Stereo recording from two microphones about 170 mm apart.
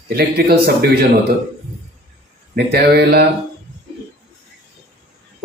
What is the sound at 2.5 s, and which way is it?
Speech, 70° right (ahead or behind).